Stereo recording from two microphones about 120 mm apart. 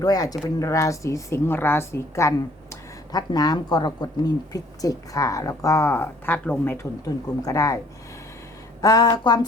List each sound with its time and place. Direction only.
0.0 s speech: 30° left (ahead or behind)
7.0 s speech: 30° left (ahead or behind)
8.8 s speech: 30° left (ahead or behind)